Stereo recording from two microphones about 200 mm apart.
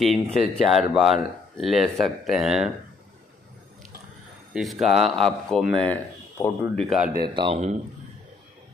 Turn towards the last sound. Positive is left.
turn(degrees=-30)  # may be behind; listen again after turning